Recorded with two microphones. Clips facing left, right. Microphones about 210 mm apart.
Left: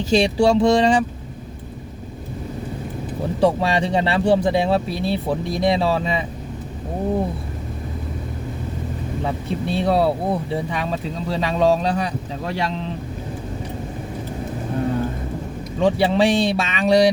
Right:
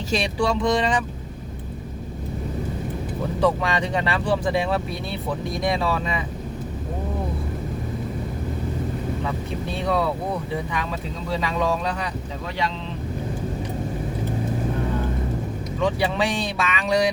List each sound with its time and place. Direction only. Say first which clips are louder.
0.1 s speech: left 7 dB; 25° left (ahead or behind)
3.4 s speech: left 4 dB; 30° left (ahead or behind)
9.2 s speech: left 4 dB; 30° left (ahead or behind)
15.8 s speech: left 6 dB; 30° left (ahead or behind)